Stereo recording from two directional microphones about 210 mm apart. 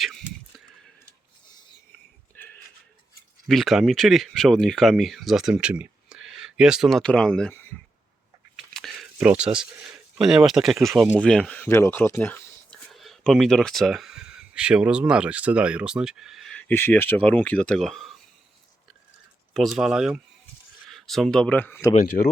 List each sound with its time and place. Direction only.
0.0 s speech: centre (ahead or behind)
3.4 s speech: centre (ahead or behind)
8.5 s a sound: centre (ahead or behind)
10.8 s speech: 5° right (ahead or behind)
19.5 s speech: centre (ahead or behind)
22.2 s speech: 35° left (ahead or behind)